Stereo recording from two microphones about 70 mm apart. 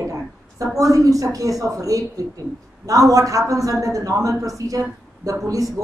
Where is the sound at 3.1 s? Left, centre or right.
Right.